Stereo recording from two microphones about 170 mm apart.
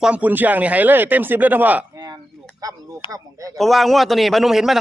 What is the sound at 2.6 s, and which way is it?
Speech, 20° right (ahead or behind).